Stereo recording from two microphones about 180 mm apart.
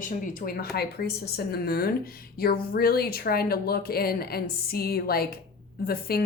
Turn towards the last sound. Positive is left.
turn(degrees=60)  # may be behind; listen again after turning